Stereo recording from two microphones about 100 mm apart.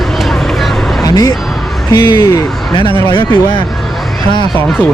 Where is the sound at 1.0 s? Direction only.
40° left (ahead or behind).